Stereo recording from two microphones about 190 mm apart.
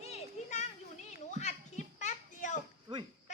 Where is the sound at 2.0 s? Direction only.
40° left (ahead or behind).